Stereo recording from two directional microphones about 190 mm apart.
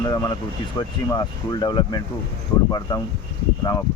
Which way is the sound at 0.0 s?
20° left (ahead or behind).